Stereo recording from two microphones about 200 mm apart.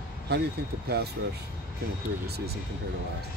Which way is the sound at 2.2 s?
55° right (ahead or behind).